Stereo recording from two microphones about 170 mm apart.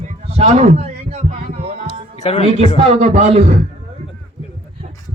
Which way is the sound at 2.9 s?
40° right (ahead or behind).